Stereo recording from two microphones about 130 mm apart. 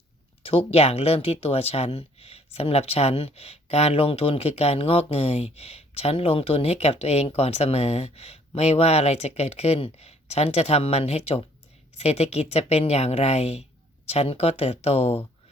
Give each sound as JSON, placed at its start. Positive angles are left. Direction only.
{"t": 0.4, "sound": "a woman's voice", "side_deg": 50}